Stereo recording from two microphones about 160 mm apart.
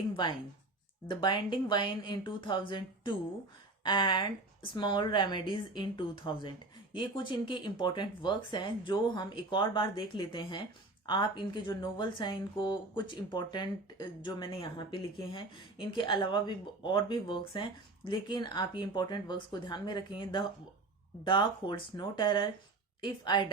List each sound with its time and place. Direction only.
1.0 s speech: 30° left (ahead or behind)